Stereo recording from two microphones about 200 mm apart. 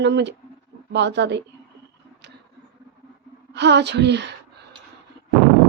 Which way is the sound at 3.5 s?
60° right (ahead or behind).